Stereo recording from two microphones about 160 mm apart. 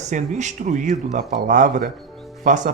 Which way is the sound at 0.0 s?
50° right (ahead or behind).